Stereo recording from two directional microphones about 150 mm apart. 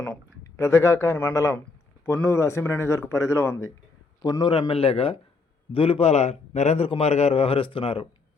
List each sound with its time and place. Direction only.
0.0 s a man's voice: 15° left (ahead or behind); by 8.0 s 35° left (ahead or behind)